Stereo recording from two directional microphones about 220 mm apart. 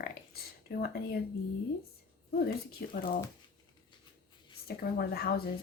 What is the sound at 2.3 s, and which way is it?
Speech, 40° left (ahead or behind).